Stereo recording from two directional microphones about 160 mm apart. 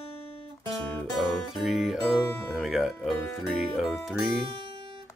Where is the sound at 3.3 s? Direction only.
Centre (ahead or behind).